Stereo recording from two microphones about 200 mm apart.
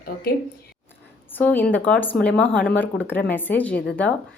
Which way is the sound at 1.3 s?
10° left (ahead or behind).